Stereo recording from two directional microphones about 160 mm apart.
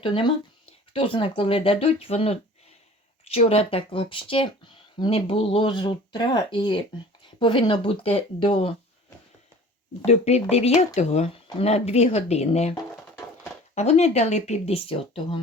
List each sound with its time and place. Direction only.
0.0 s speech: 30° left (ahead or behind)
10.1 s speech: 40° left (ahead or behind)
13.7 s speech: 45° left (ahead or behind)